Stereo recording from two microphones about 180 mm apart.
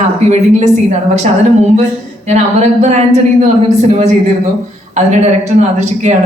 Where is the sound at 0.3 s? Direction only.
40° right (ahead or behind).